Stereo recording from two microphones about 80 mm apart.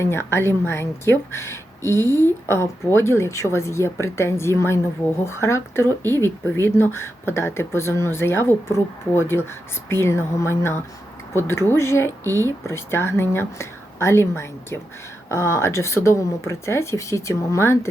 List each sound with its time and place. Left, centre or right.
0.0 s speech: left